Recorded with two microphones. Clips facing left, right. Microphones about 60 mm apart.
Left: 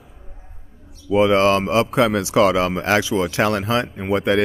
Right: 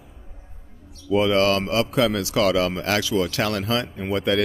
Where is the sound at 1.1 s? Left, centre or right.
Left.